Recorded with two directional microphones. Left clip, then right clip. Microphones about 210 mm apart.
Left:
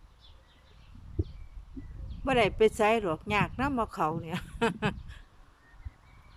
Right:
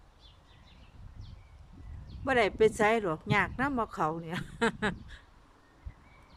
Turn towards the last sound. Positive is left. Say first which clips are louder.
# even
turn(degrees=5)  # may be behind; listen again after turning